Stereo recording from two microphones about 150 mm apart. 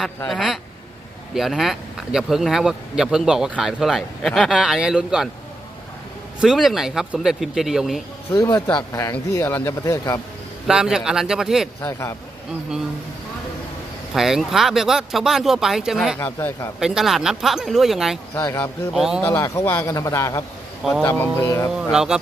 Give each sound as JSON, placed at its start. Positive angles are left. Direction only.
{"t": 0.3, "sound": "speech", "side_deg": 0}
{"t": 6.4, "sound": "speech", "side_deg": 0}
{"t": 8.3, "sound": "speech", "side_deg": 25}
{"t": 10.7, "sound": "speech", "side_deg": -5}
{"t": 11.8, "sound": "speech", "side_deg": 20}
{"t": 14.1, "sound": "speech", "side_deg": 0}
{"t": 16.2, "sound": "speech", "side_deg": 15}
{"t": 16.8, "sound": "speech", "side_deg": -5}
{"t": 18.3, "sound": "speech", "side_deg": 15}
{"t": 18.9, "sound": "speech", "side_deg": 0}
{"t": 19.2, "sound": "speech", "side_deg": 20}
{"t": 21.9, "sound": "speech", "side_deg": -5}